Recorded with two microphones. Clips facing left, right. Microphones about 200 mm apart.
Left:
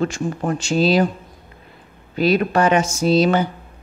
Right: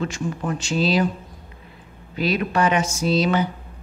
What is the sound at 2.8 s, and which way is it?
Speech, 35° left (ahead or behind).